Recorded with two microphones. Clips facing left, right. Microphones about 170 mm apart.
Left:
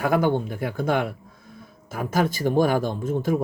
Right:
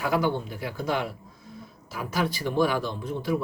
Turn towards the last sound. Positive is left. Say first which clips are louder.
# left 4 dB
turn(degrees=45)  # may be behind; listen again after turning